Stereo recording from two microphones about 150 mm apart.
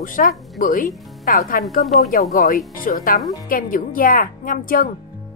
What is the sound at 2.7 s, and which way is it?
Speech, 65° left (ahead or behind).